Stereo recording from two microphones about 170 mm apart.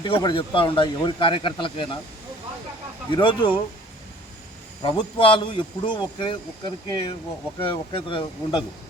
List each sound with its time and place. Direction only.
0.0 s a man's voice: 25° left (ahead or behind)
3.1 s a man's voice: 30° left (ahead or behind)
4.8 s a man's voice: 30° left (ahead or behind)